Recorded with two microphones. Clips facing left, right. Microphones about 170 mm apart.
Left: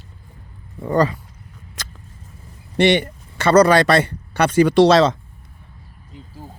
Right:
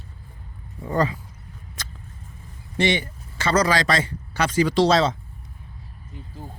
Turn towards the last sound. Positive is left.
turn(degrees=80)